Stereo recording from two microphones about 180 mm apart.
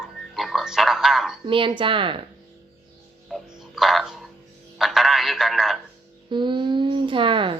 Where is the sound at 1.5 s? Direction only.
30° right (ahead or behind).